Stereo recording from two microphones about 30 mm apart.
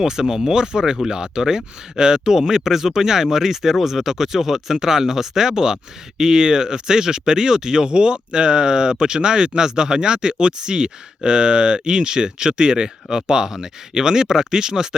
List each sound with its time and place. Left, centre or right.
0.0 s speech: right